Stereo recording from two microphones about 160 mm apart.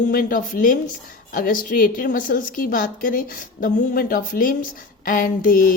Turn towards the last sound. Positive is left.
turn(degrees=60)  # may be behind; listen again after turning